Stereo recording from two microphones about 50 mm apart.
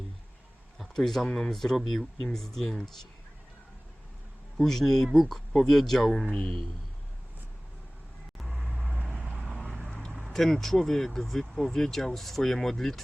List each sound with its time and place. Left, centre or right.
0.9 s speech: centre
4.5 s speech: centre
6.3 s speech: centre
8.8 s vehicle: right
9.4 s vehicle: centre
10.2 s speech: centre